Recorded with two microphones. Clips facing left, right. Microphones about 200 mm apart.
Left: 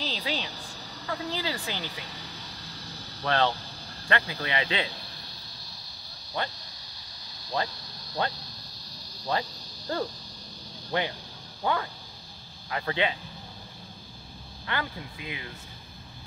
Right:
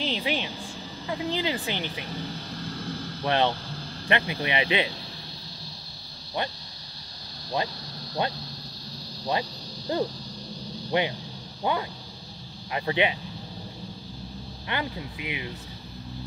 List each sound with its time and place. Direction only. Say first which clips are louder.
0.0 s a sound: right 4 dB; 20° right (ahead or behind)
1.0 s speech: right 4 dB; 20° right (ahead or behind)
3.3 s speech: right 2 dB; 15° right (ahead or behind)
7.6 s speech: right 2 dB; 15° right (ahead or behind)
9.9 s speech: right 4 dB; 15° right (ahead or behind)
14.7 s speech: right 2 dB; 20° right (ahead or behind)